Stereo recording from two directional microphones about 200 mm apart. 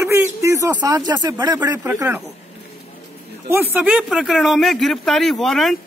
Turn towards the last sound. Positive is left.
turn(degrees=0)  # may be behind; listen again after turning